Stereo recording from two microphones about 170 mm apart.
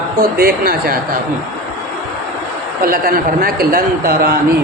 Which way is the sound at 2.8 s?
55° right (ahead or behind).